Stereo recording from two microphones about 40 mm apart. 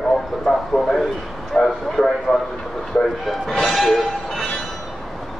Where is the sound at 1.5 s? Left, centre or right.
Left.